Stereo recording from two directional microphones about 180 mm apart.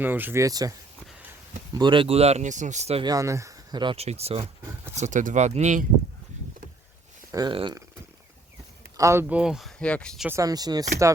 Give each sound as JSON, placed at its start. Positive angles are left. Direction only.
{"t": 0.0, "sound": "speech", "side_deg": -10}
{"t": 1.7, "sound": "speech", "side_deg": -25}
{"t": 3.1, "sound": "speech", "side_deg": -20}
{"t": 7.3, "sound": "speech", "side_deg": -20}
{"t": 9.0, "sound": "speech", "side_deg": -15}
{"t": 9.4, "sound": "speech", "side_deg": 0}
{"t": 10.2, "sound": "speech", "side_deg": -20}